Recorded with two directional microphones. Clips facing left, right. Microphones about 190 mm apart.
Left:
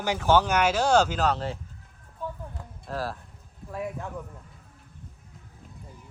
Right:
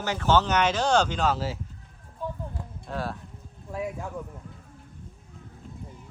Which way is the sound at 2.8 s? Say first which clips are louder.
Even; centre (ahead or behind).